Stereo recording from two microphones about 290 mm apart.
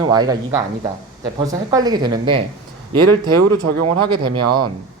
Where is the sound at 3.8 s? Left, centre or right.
Right.